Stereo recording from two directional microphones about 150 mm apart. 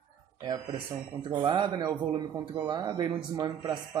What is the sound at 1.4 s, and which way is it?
Speech, 30° right (ahead or behind).